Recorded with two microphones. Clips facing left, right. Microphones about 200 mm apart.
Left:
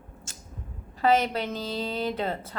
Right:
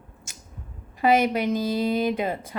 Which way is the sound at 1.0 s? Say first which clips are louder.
Right 3 dB; 10° right (ahead or behind).